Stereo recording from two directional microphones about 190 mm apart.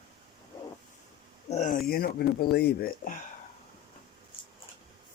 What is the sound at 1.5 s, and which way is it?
Speech, 40° left (ahead or behind).